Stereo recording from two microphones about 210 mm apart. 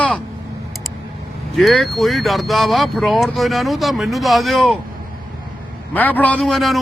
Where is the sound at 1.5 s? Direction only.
Centre (ahead or behind).